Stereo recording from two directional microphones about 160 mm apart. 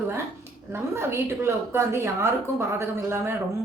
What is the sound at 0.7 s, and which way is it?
A woman's voice, 15° right (ahead or behind).